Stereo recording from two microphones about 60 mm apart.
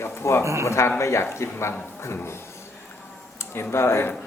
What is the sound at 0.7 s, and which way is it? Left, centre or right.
A man's voice, left.